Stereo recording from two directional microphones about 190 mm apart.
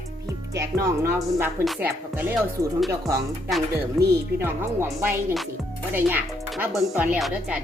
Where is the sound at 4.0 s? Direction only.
Centre (ahead or behind).